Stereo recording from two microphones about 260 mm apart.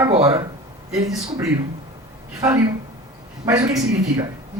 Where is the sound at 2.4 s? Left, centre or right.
Centre.